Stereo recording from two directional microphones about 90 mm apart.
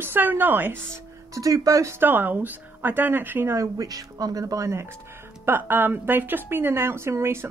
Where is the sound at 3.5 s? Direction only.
40° right (ahead or behind).